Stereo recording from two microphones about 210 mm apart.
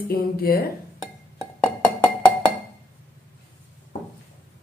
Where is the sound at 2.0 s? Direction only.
20° left (ahead or behind).